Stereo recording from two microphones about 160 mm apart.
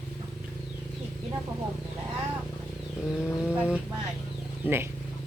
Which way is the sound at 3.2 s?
5° right (ahead or behind).